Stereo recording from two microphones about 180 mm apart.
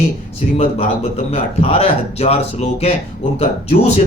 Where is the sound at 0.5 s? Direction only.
35° left (ahead or behind).